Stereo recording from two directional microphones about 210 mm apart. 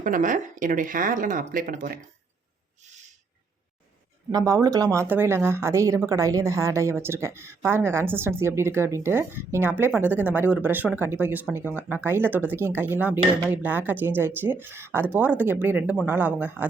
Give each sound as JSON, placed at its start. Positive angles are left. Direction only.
{"t": 0.0, "sound": "speech", "side_deg": -40}
{"t": 4.3, "sound": "speech", "side_deg": -15}